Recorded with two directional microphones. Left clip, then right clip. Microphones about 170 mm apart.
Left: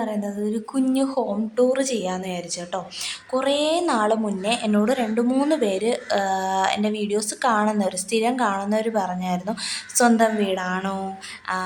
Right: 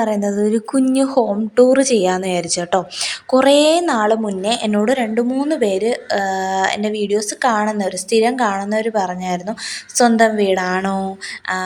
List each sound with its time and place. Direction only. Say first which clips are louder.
0.0 s speech: right 9 dB; 35° right (ahead or behind)